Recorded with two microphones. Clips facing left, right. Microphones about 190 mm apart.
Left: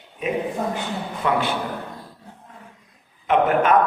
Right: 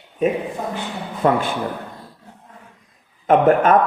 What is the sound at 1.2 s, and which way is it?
Speech, 45° right (ahead or behind).